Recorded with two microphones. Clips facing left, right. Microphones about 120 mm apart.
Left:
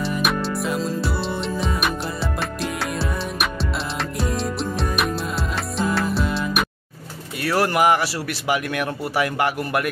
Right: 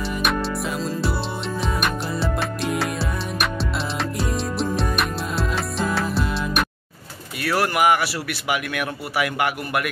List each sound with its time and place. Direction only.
0.2 s music: centre (ahead or behind)
7.4 s speech: 30° left (ahead or behind)